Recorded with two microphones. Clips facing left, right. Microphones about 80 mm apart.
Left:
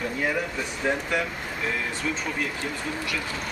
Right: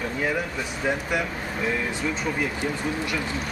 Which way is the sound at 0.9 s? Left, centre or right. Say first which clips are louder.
Even; centre.